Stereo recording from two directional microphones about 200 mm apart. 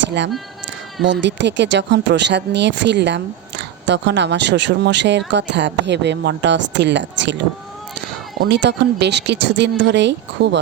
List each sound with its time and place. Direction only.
0.0 s speech: 60° right (ahead or behind)
8.4 s speech: 60° right (ahead or behind)